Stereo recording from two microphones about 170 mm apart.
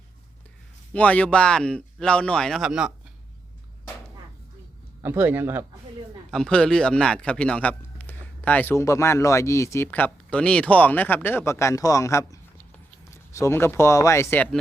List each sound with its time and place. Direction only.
0.9 s speech: 10° left (ahead or behind)
5.0 s speech: 15° right (ahead or behind)
6.3 s a man's voice: 5° left (ahead or behind)